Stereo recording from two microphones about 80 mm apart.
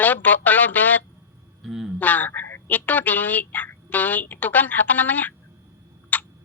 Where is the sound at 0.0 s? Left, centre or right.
Left.